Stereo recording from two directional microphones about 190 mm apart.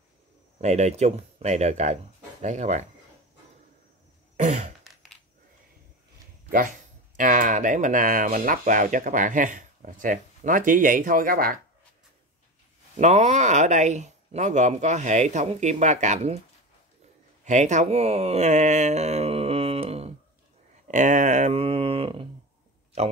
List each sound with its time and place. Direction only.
0.6 s speech: 35° right (ahead or behind)
4.4 s throat clearing: 40° right (ahead or behind)
4.8 s coin: centre (ahead or behind)
7.2 s speech: 45° right (ahead or behind)
12.9 s speech: 35° right (ahead or behind)
17.5 s speech: 40° right (ahead or behind)